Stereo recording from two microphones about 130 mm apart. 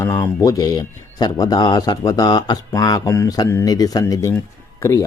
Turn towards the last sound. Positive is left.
turn(degrees=25)  # may be behind; listen again after turning